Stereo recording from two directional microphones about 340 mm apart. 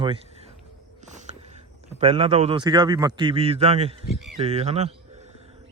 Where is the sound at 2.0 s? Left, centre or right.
Centre.